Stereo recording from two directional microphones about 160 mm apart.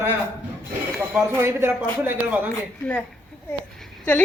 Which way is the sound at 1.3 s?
15° right (ahead or behind).